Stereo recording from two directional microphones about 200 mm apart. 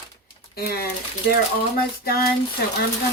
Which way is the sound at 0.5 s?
50° left (ahead or behind).